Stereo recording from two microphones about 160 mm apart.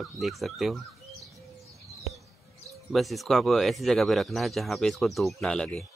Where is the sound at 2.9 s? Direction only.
Centre (ahead or behind).